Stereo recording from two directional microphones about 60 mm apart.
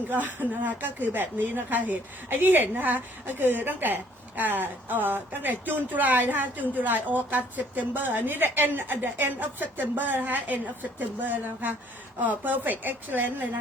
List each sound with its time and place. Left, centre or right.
0.1 s a woman's voice: right